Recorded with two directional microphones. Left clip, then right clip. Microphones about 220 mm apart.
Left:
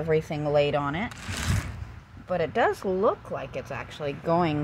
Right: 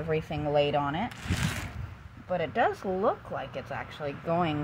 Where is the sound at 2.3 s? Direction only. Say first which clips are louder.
Left 3 dB; 30° left (ahead or behind).